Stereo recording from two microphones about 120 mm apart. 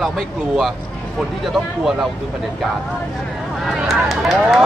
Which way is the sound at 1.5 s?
5° right (ahead or behind).